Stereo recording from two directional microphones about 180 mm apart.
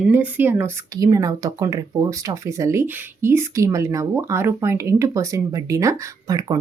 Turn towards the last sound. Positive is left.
turn(degrees=-20)  # may be behind; listen again after turning